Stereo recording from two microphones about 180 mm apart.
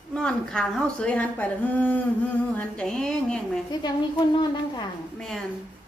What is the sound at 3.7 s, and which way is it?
A woman's voice, 25° left (ahead or behind).